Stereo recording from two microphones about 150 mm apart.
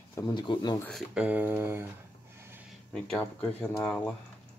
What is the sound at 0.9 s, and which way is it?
Speech, centre (ahead or behind).